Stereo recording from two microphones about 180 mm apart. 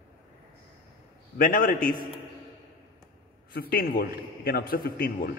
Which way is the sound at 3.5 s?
55° left (ahead or behind).